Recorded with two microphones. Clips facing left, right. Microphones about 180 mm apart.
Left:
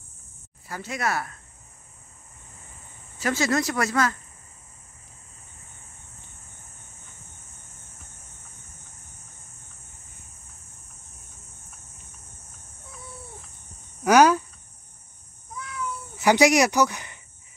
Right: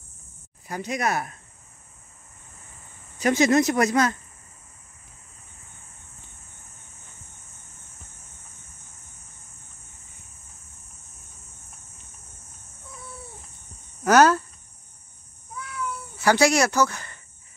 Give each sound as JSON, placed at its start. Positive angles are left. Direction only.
{"t": 0.7, "sound": "speech", "side_deg": -20}
{"t": 3.2, "sound": "speech", "side_deg": -20}
{"t": 14.0, "sound": "cricket", "side_deg": 10}
{"t": 16.2, "sound": "speech", "side_deg": 15}